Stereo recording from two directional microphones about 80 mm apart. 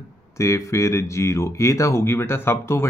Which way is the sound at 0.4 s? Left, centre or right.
Left.